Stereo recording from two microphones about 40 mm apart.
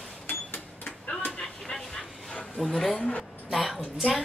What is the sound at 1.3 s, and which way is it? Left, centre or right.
Vehicle, centre.